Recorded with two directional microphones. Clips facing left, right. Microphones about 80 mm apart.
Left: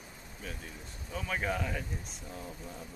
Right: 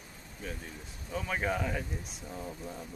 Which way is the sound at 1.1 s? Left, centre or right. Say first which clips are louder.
Right 2 dB; centre.